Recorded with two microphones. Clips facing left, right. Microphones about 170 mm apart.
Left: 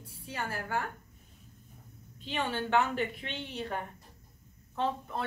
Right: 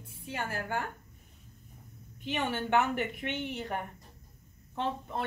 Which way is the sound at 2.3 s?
15° right (ahead or behind).